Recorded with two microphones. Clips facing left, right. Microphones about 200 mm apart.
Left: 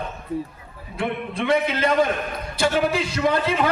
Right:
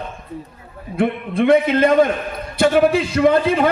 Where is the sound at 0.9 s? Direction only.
55° right (ahead or behind).